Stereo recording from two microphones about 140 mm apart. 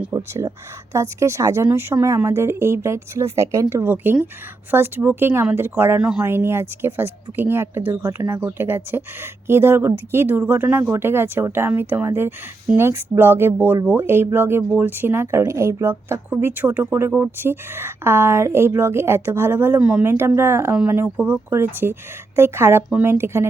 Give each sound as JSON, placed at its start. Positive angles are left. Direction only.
{"t": 0.1, "sound": "speech", "side_deg": -20}